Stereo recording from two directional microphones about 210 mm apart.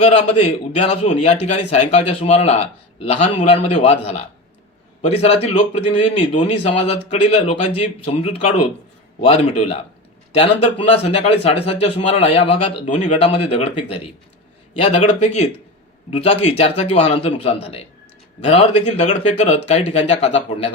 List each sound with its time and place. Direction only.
0.0 s a man's voice: 30° left (ahead or behind)
10.3 s speech: 25° left (ahead or behind)